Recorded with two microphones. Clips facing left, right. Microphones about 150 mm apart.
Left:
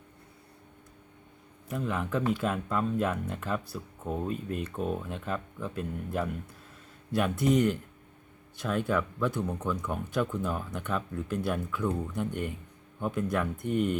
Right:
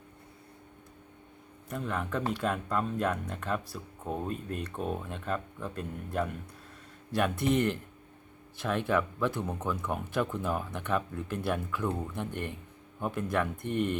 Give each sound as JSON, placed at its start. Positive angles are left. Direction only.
{"t": 1.7, "sound": "speech", "side_deg": 0}